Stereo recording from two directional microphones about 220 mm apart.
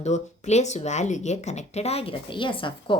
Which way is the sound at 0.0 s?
30° left (ahead or behind).